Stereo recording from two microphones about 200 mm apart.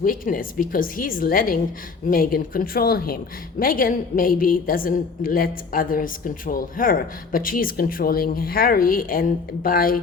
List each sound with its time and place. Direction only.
0.0 s a woman's voice: 45° left (ahead or behind)